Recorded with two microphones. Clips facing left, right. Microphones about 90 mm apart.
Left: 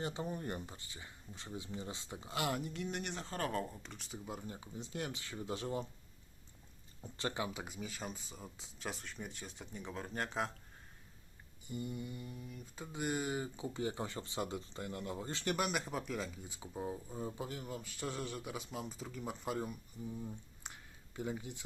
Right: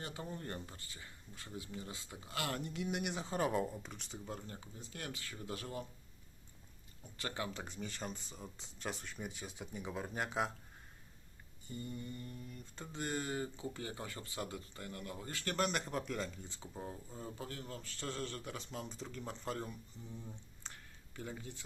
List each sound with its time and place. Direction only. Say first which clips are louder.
0.0 s speech: left 5 dB; 20° left (ahead or behind)
2.6 s speech: right 1 dB; centre (ahead or behind)
3.9 s speech: even; centre (ahead or behind); by 5.9 s 20° left (ahead or behind)
7.2 s speech: left 3 dB; 20° left (ahead or behind); by 10.5 s 5° right (ahead or behind)
11.7 s speech: left 2 dB; 15° left (ahead or behind)
15.5 s speech: right 4 dB; 5° left (ahead or behind)